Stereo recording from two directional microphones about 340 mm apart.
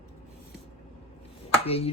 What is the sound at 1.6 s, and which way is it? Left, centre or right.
Chopping, centre.